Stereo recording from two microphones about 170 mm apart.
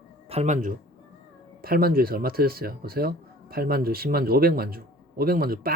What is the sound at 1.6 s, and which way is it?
Speech, 60° right (ahead or behind).